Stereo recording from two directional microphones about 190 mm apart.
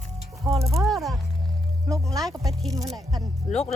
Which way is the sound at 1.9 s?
15° right (ahead or behind).